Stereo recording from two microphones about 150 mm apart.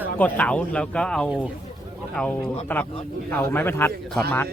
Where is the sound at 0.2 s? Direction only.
10° left (ahead or behind).